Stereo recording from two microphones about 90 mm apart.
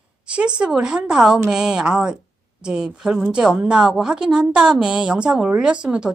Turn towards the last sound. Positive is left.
turn(degrees=-10)  # may be behind; listen again after turning